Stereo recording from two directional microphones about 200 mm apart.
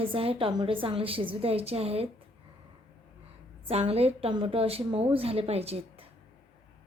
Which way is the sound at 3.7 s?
30° right (ahead or behind).